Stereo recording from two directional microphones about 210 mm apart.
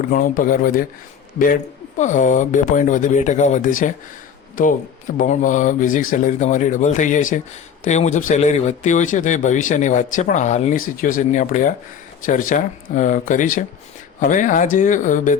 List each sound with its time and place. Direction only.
0.1 s speech: 40° left (ahead or behind)
2.0 s speech: 35° left (ahead or behind)